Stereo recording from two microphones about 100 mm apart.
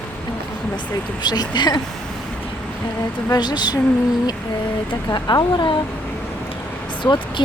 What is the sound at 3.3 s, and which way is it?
Speech, 45° left (ahead or behind).